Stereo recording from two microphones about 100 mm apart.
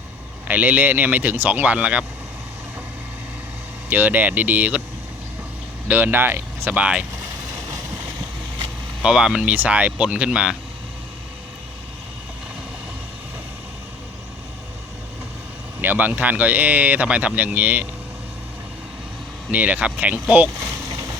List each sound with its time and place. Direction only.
0.4 s speech: 15° right (ahead or behind)
3.8 s speech: 20° right (ahead or behind)
5.9 s speech: 20° right (ahead or behind)
9.0 s speech: 5° right (ahead or behind)
15.8 s speech: 15° right (ahead or behind)
19.5 s speech: 15° right (ahead or behind)
20.6 s a sound: 40° right (ahead or behind)